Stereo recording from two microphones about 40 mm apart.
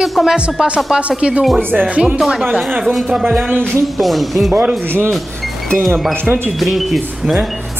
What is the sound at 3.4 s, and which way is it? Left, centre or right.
Speech, right.